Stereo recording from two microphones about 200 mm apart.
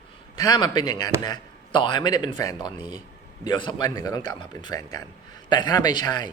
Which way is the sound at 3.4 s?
20° left (ahead or behind).